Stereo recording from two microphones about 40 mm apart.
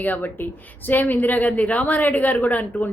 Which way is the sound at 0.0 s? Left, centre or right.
Left.